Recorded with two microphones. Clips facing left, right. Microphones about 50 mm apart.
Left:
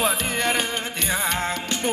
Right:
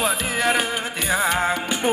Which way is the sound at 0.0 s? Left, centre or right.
Centre.